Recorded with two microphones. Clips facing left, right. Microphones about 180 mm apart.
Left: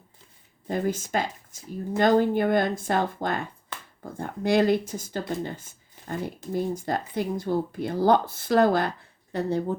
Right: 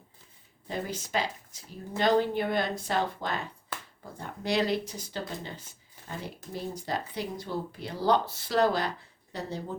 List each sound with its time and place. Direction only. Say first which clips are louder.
0.7 s speech: left 6 dB; 50° left (ahead or behind)